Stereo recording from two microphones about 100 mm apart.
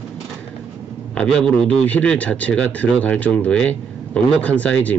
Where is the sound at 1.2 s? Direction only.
5° left (ahead or behind).